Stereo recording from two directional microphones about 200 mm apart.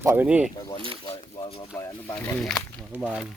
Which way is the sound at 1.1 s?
30° left (ahead or behind).